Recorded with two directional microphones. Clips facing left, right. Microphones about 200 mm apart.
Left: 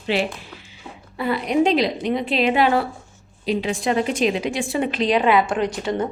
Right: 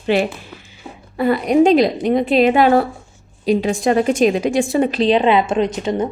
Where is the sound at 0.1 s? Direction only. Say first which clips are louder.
Right 5 dB; 50° right (ahead or behind).